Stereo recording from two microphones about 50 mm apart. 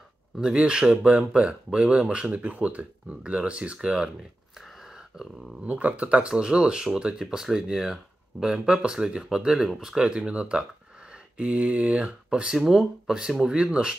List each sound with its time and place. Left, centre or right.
0.4 s speech: centre
4.6 s a sound: centre
5.6 s speech: right; by 13.9 s centre